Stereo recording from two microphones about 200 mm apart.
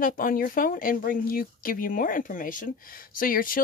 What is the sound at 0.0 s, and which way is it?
Speech, 45° left (ahead or behind).